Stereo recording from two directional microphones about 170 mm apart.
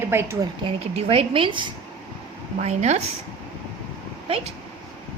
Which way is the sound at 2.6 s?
40° right (ahead or behind).